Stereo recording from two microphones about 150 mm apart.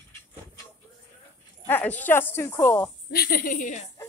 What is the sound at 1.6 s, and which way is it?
Speech, 10° left (ahead or behind).